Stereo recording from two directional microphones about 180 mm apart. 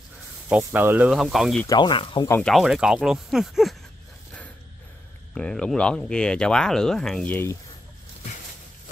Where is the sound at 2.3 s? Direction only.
5° left (ahead or behind).